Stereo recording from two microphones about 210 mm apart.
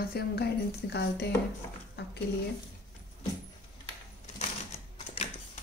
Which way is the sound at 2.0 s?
50° left (ahead or behind).